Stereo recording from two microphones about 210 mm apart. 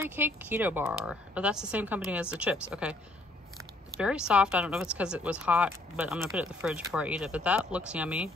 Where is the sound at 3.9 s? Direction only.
5° right (ahead or behind).